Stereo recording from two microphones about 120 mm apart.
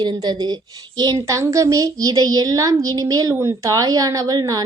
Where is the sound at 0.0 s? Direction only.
35° right (ahead or behind).